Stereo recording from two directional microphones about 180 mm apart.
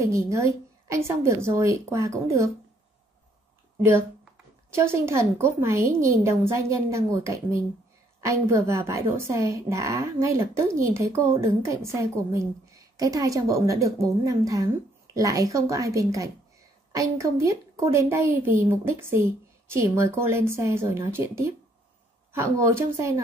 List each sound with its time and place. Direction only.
0.0 s a woman's voice: 15° right (ahead or behind)
3.8 s a woman's voice: 10° right (ahead or behind)